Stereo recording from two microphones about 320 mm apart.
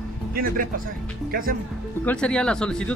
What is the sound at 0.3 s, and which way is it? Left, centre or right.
Speech, right.